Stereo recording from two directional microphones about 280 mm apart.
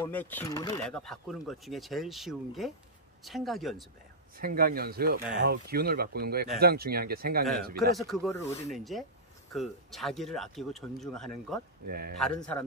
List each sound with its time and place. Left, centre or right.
0.0 s speech: centre
4.4 s speech: right
8.0 s speech: centre
11.9 s speech: right
12.4 s speech: centre